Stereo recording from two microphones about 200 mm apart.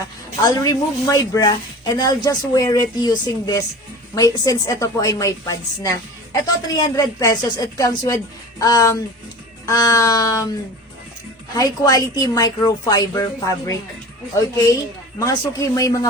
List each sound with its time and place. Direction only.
0.4 s a woman's voice: 20° left (ahead or behind)
11.5 s a woman's voice: 15° left (ahead or behind)